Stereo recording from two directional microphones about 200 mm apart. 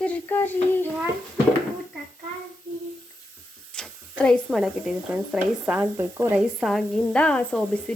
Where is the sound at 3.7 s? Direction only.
5° left (ahead or behind).